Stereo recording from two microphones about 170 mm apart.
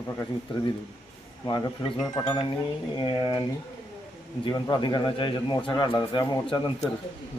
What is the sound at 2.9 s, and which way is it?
A man's voice, 25° left (ahead or behind).